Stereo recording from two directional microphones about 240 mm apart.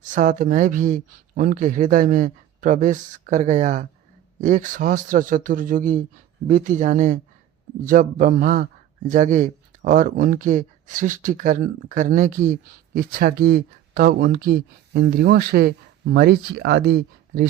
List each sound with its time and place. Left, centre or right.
0.0 s speech: right